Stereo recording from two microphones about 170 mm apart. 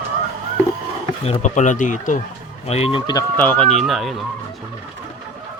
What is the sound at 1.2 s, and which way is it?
Speech, 40° left (ahead or behind).